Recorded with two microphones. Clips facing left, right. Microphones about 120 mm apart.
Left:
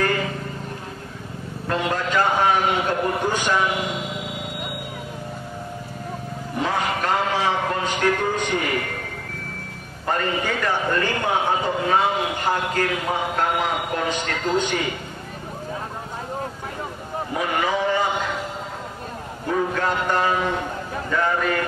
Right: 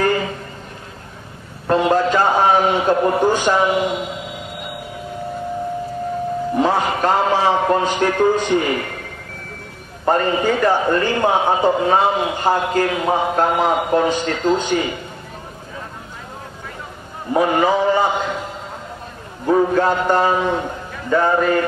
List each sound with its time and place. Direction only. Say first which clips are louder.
1.7 s a man's voice: right 8 dB; 30° right (ahead or behind)
6.6 s a man's voice: right 5 dB; 35° right (ahead or behind)
10.0 s a man's voice: right 7 dB; 30° right (ahead or behind)
17.3 s a sound: right 8 dB; 35° right (ahead or behind)
19.4 s a man's voice: right 8 dB; 30° right (ahead or behind)